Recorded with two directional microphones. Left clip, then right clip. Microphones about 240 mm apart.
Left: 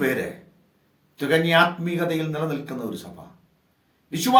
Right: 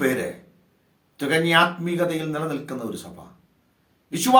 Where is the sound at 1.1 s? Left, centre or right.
Centre.